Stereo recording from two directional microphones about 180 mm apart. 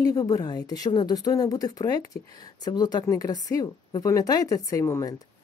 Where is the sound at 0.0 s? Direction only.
20° left (ahead or behind).